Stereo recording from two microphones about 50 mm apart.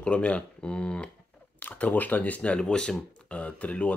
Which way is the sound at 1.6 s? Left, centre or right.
Left.